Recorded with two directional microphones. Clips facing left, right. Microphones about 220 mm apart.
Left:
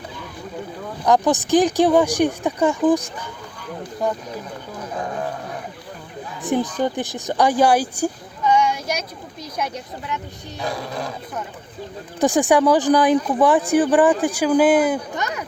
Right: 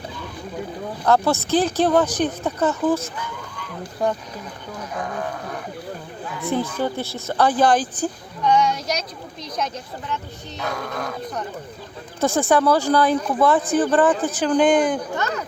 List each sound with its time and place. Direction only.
1.0 s a woman's voice: 15° left (ahead or behind)
4.9 s speech: 30° left (ahead or behind)
6.4 s speech: 15° left (ahead or behind)
10.8 s speech: 30° left (ahead or behind)
12.2 s a woman's voice: 15° left (ahead or behind)